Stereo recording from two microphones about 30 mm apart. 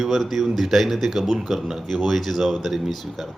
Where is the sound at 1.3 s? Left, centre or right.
Centre.